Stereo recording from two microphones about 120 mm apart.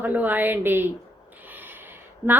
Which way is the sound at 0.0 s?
15° right (ahead or behind).